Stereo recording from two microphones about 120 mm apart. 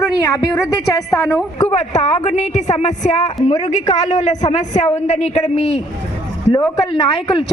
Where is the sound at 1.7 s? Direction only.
70° left (ahead or behind).